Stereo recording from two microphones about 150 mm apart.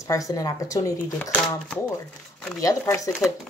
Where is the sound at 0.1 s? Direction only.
25° left (ahead or behind).